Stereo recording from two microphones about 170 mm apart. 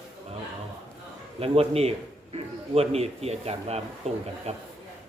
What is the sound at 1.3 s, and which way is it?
A man's voice, 35° right (ahead or behind).